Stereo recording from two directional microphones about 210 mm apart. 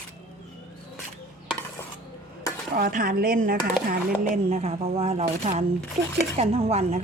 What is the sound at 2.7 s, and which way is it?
Speech, 45° right (ahead or behind).